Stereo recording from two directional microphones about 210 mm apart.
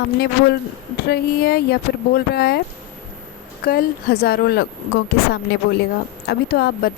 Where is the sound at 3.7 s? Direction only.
45° left (ahead or behind).